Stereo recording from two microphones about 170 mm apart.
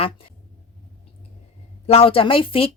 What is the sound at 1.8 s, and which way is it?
Speech, 35° left (ahead or behind).